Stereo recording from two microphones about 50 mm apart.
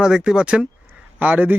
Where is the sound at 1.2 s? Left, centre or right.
Right.